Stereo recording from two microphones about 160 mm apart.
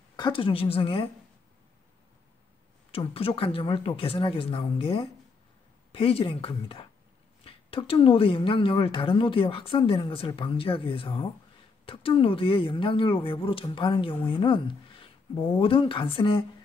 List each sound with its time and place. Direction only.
0.1 s a woman's voice: 30° left (ahead or behind)
2.9 s speech: 35° left (ahead or behind)